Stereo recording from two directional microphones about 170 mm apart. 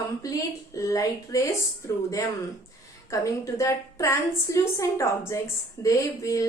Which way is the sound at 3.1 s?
20° left (ahead or behind).